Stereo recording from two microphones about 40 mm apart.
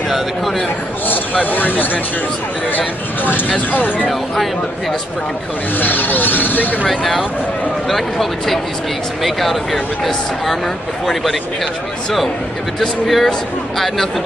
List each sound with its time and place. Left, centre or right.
0.1 s speech: centre
1.4 s speech: left
3.7 s speech: left
5.8 s speech: left
6.9 s speech: centre
13.0 s speech: centre